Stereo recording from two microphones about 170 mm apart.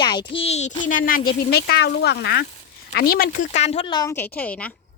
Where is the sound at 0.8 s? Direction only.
55° left (ahead or behind).